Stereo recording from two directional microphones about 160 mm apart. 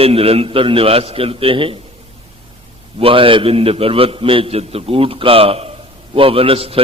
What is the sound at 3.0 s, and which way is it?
A man's voice, 35° right (ahead or behind).